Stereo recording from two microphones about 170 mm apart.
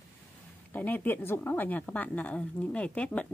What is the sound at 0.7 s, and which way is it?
A woman's voice, 10° left (ahead or behind).